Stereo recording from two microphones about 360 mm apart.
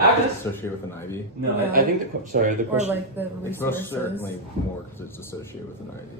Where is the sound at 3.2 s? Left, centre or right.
Centre.